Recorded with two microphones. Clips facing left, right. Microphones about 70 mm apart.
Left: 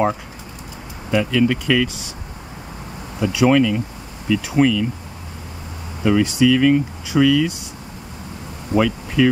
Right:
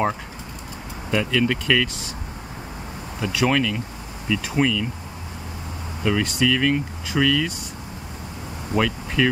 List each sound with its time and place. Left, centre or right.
1.1 s speech: centre
3.2 s speech: centre
6.0 s speech: centre
8.7 s speech: centre